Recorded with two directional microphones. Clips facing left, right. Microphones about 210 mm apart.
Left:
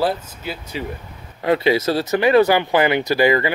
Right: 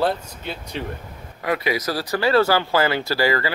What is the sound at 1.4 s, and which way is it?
Speech, 25° left (ahead or behind).